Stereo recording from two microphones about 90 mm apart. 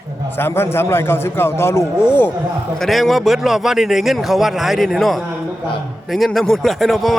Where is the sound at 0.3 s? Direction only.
25° left (ahead or behind).